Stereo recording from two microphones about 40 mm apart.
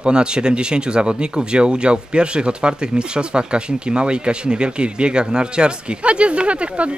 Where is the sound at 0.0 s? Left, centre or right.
Right.